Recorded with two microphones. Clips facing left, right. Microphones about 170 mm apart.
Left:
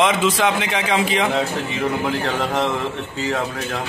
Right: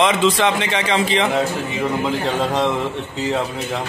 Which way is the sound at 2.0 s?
20° right (ahead or behind).